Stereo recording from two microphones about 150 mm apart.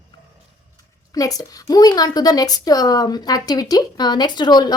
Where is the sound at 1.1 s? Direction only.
25° left (ahead or behind).